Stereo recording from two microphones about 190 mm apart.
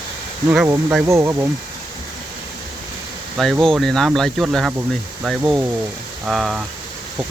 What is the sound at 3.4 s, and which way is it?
Speech, centre (ahead or behind).